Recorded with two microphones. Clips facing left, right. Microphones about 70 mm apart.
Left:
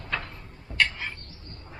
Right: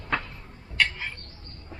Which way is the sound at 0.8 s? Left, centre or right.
Centre.